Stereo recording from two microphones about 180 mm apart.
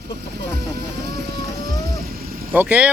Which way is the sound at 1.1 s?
65° right (ahead or behind).